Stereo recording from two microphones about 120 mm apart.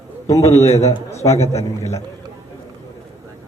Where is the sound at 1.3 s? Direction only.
60° left (ahead or behind).